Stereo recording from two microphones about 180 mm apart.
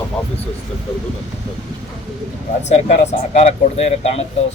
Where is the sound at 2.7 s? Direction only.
40° left (ahead or behind).